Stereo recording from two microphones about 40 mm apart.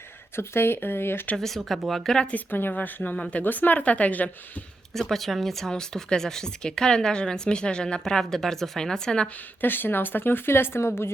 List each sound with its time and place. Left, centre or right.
0.3 s speech: left
1.4 s speech: centre
2.7 s speech: left
3.2 s speech: left
3.4 s speech: left
4.9 s speech: centre; by 8.0 s left
8.0 s speech: centre
9.6 s speech: left